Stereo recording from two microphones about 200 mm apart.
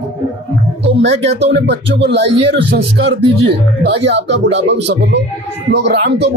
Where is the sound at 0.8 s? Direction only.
60° right (ahead or behind).